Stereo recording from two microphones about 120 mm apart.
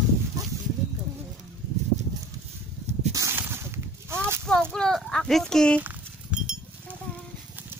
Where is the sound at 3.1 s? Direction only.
25° right (ahead or behind).